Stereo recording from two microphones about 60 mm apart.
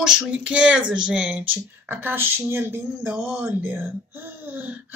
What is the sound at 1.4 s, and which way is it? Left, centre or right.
Speech, right.